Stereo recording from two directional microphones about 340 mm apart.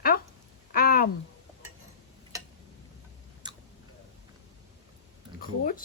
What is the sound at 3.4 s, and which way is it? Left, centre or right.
Chewing, centre.